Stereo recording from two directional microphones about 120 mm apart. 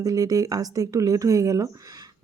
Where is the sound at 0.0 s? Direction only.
30° right (ahead or behind).